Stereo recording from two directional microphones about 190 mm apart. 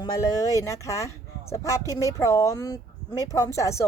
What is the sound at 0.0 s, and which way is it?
Speech, 20° left (ahead or behind).